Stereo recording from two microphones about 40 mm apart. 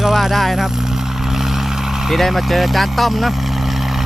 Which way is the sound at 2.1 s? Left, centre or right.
Centre.